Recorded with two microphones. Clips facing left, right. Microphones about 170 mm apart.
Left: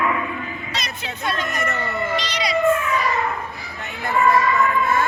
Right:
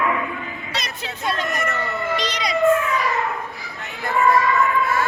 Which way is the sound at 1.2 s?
Centre (ahead or behind).